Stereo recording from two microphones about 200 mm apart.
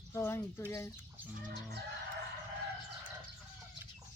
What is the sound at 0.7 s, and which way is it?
Speech, 15° left (ahead or behind).